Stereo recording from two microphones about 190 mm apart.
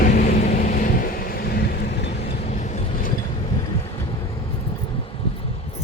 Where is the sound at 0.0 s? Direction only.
40° left (ahead or behind); by 2.4 s 60° left (ahead or behind).